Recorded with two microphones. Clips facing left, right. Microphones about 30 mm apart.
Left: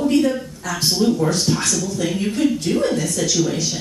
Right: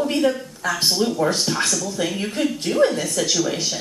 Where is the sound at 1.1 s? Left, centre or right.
Centre.